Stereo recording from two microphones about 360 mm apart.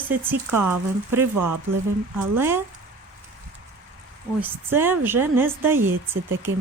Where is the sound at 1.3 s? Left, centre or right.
Right.